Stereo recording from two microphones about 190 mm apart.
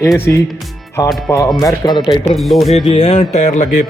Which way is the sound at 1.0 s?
15° left (ahead or behind).